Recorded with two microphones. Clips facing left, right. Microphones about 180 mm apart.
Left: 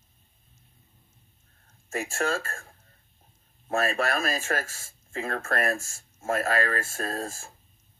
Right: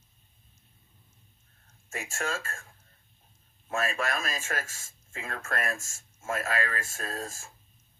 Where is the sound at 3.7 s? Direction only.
40° left (ahead or behind).